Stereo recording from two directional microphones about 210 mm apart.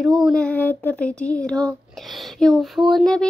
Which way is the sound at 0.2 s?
5° left (ahead or behind).